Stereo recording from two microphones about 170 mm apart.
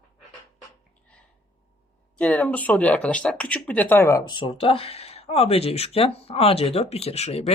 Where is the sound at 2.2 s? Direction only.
10° left (ahead or behind).